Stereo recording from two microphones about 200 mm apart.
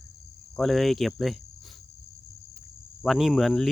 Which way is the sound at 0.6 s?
Centre (ahead or behind).